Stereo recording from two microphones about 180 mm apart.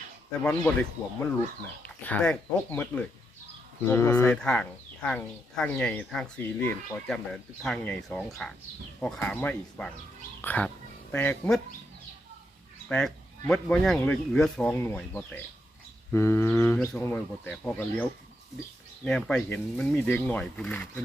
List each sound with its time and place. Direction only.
0.4 s speech: 10° left (ahead or behind)
12.9 s speech: 5° left (ahead or behind)